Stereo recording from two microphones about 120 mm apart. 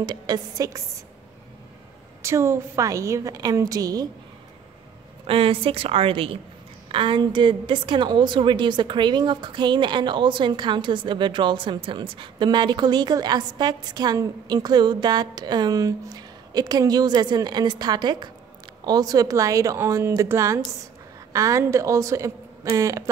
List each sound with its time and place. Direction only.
0.0 s a woman's voice: 35° right (ahead or behind)
2.2 s a woman's voice: 20° right (ahead or behind)
5.2 s a woman's voice: 50° right (ahead or behind); by 23.0 s 25° right (ahead or behind)